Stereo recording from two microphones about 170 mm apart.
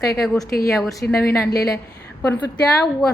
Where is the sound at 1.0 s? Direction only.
10° left (ahead or behind).